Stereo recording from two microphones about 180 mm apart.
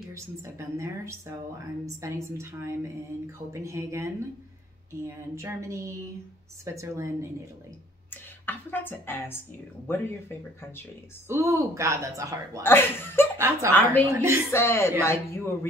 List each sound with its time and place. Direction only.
0.1 s a woman's voice: 15° right (ahead or behind)
8.1 s a woman's voice: 10° left (ahead or behind)
11.2 s a woman's voice: 15° right (ahead or behind)
12.6 s speech: 10° left (ahead or behind)
14.0 s a woman's voice: 15° right (ahead or behind)
14.5 s speech: 15° left (ahead or behind)